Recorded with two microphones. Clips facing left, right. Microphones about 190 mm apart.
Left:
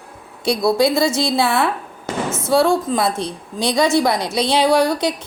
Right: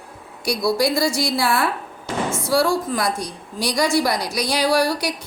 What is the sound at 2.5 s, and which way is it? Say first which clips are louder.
A woman's voice: left 4 dB; 20° left (ahead or behind).